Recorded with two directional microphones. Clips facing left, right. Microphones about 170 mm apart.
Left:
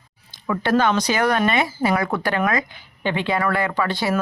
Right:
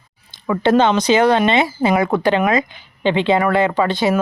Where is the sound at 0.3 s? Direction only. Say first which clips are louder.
Right 5 dB; 25° right (ahead or behind).